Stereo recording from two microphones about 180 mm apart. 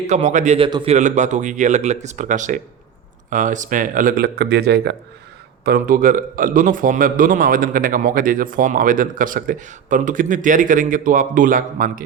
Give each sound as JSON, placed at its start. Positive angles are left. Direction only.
{"t": 0.1, "sound": "a man's voice", "side_deg": -40}
{"t": 0.9, "sound": "a man's voice", "side_deg": -40}
{"t": 5.6, "sound": "a man's voice", "side_deg": -55}